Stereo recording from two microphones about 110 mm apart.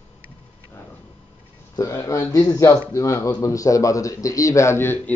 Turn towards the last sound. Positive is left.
turn(degrees=20)  # may be behind; listen again after turning